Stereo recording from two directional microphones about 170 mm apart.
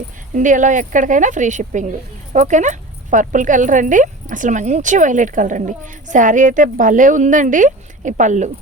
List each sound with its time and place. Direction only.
0.3 s speech: 50° right (ahead or behind)